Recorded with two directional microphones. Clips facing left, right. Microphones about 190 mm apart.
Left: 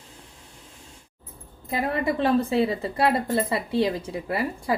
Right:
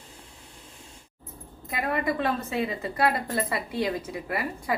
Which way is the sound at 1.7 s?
30° left (ahead or behind).